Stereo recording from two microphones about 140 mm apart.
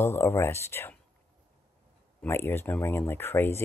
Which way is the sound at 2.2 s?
15° left (ahead or behind).